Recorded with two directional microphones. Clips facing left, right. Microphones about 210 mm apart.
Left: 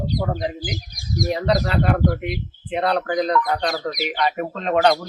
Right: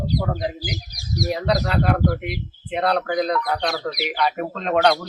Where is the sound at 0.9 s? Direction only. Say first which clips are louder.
Left 1 dB; 50° left (ahead or behind).